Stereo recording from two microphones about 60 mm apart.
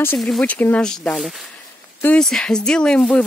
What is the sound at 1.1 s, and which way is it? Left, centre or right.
Speech, centre.